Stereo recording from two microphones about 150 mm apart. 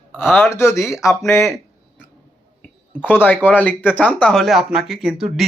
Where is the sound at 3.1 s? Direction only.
10° left (ahead or behind).